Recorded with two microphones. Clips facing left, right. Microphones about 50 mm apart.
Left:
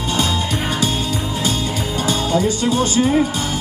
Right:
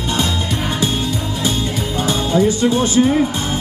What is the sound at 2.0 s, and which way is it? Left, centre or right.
Music, right.